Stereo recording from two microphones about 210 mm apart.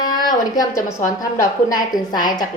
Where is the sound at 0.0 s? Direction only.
20° left (ahead or behind).